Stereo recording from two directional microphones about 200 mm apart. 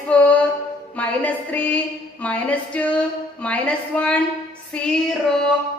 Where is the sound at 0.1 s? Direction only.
5° left (ahead or behind).